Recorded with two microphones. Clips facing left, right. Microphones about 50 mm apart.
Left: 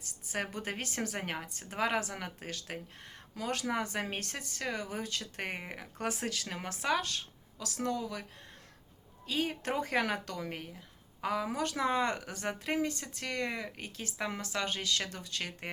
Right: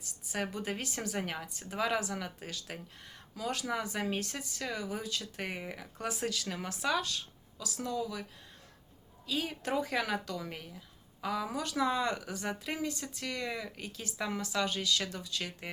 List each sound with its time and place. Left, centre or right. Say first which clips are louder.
0.0 s a woman's voice: even; left
9.2 s a woman's voice: left 2 dB; left
13.6 s a woman's voice: left 1 dB; left
14.2 s speech: right 1 dB; left
14.4 s a woman's voice: right 4 dB; left